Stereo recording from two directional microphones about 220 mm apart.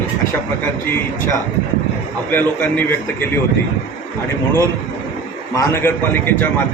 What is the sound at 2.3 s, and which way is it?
Speech, 10° left (ahead or behind).